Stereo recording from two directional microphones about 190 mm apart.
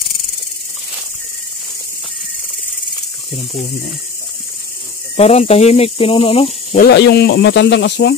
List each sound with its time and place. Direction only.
5.1 s speech: 35° left (ahead or behind)
6.8 s speech: 60° left (ahead or behind)